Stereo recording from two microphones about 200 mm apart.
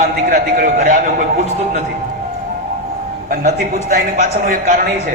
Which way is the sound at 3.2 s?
45° right (ahead or behind).